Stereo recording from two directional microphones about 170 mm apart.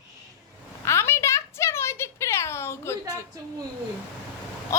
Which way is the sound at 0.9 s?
15° left (ahead or behind).